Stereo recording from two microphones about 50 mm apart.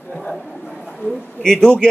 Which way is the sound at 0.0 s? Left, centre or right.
Left.